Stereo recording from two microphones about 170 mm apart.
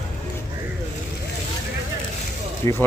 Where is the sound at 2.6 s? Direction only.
20° left (ahead or behind).